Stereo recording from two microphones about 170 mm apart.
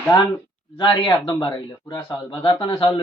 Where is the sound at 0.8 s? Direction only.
30° left (ahead or behind).